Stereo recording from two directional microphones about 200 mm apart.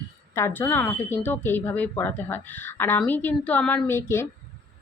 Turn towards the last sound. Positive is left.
turn(degrees=15)  # may be behind; listen again after turning